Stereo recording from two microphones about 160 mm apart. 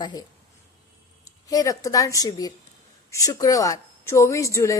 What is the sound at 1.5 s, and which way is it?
A woman's voice, 20° left (ahead or behind).